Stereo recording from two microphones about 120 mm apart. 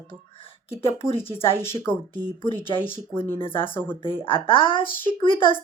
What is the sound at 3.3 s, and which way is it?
Speech, 45° left (ahead or behind).